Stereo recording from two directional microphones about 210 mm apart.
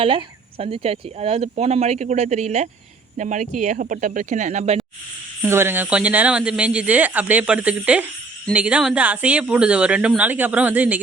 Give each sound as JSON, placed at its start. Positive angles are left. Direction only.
{"t": 0.0, "sound": "speech", "side_deg": -25}
{"t": 5.4, "sound": "speech", "side_deg": -10}